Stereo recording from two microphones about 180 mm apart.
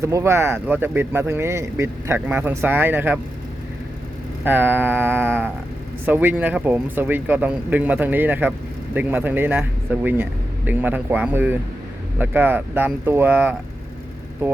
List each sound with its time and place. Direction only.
0.0 s speech: 15° right (ahead or behind)
4.4 s speech: 10° right (ahead or behind)